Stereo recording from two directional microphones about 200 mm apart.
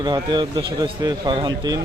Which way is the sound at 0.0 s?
20° right (ahead or behind).